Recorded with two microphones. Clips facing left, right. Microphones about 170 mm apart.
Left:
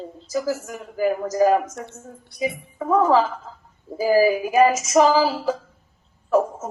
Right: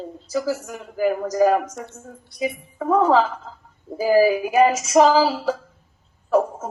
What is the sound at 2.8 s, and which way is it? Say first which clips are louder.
Speech: right 1 dB; 10° right (ahead or behind).